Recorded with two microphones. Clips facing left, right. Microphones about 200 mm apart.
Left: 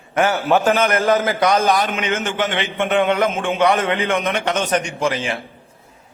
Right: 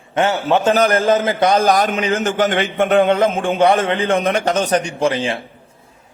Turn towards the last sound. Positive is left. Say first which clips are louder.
# right 3 dB
turn(degrees=-30)  # may be behind; listen again after turning